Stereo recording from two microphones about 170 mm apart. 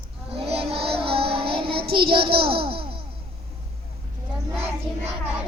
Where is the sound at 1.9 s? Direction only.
30° right (ahead or behind).